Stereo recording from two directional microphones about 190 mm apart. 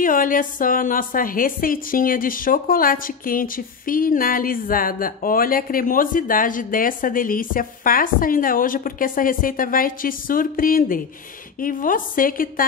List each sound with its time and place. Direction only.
0.0 s a woman's voice: 45° left (ahead or behind)